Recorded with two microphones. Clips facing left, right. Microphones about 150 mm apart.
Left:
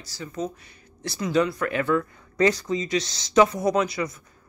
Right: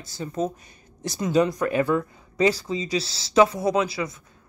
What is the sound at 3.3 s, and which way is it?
Speech, 5° right (ahead or behind).